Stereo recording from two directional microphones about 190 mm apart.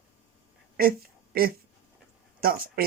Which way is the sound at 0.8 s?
50° right (ahead or behind).